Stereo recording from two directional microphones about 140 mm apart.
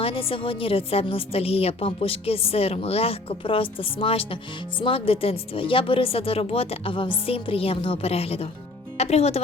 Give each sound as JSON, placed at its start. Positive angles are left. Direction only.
{"t": 0.0, "sound": "a woman's voice", "side_deg": 40}